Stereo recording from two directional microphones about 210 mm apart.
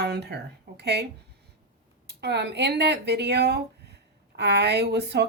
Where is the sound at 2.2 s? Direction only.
55° right (ahead or behind).